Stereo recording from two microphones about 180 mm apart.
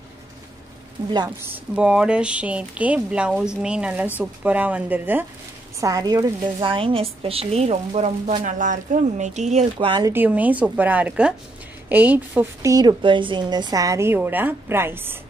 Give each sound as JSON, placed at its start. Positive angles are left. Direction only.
{"t": 1.0, "sound": "speech", "side_deg": -25}
{"t": 1.4, "sound": "a woman's voice", "side_deg": -10}
{"t": 5.8, "sound": "a woman's voice", "side_deg": -20}
{"t": 10.1, "sound": "a woman's voice", "side_deg": -10}